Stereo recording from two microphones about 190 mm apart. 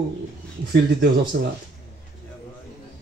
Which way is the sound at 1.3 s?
60° right (ahead or behind).